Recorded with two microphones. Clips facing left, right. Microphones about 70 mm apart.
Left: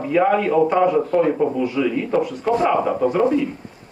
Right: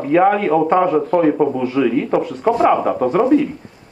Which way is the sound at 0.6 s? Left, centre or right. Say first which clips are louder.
Right 2 dB; right.